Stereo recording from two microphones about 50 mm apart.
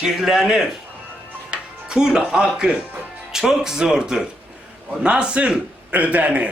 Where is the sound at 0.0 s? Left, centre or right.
Centre.